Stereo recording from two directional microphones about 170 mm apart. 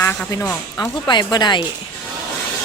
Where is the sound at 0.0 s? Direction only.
15° left (ahead or behind).